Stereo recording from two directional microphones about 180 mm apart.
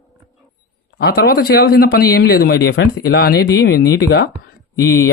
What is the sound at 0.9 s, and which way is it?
A man's voice, 60° left (ahead or behind).